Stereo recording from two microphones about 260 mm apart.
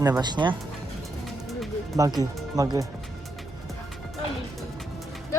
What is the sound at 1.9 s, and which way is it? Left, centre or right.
Speech, centre.